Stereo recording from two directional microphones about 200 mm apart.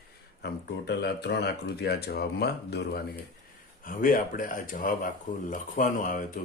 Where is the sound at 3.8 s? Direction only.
45° left (ahead or behind).